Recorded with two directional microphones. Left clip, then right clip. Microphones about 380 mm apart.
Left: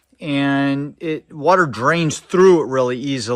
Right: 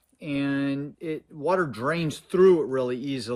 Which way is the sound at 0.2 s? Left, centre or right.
Centre.